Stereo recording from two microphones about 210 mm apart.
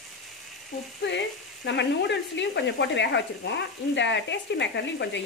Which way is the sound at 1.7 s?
55° left (ahead or behind).